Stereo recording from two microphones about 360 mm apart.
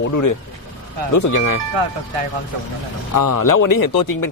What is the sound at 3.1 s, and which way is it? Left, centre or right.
Speech, left.